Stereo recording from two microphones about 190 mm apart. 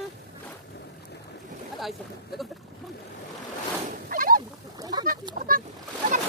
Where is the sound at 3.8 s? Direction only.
45° right (ahead or behind).